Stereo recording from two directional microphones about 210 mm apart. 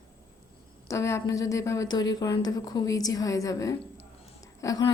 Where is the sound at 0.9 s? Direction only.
15° left (ahead or behind).